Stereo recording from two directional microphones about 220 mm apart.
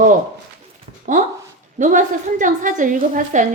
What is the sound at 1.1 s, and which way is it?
A woman's voice, 35° right (ahead or behind).